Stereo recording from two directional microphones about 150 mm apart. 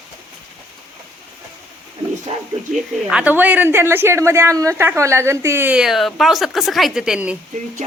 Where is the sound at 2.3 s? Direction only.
45° right (ahead or behind).